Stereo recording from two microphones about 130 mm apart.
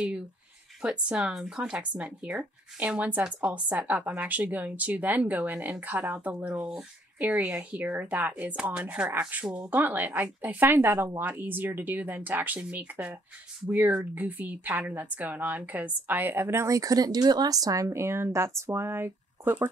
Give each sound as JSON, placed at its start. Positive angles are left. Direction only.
{"t": 0.8, "sound": "a woman's voice", "side_deg": -10}